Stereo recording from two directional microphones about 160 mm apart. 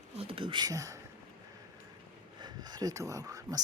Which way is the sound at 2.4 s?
25° right (ahead or behind).